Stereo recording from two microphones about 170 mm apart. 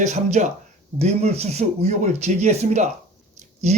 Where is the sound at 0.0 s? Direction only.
45° right (ahead or behind).